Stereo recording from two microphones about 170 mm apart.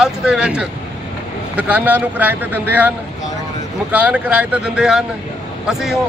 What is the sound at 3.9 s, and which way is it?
A man's voice, 10° right (ahead or behind).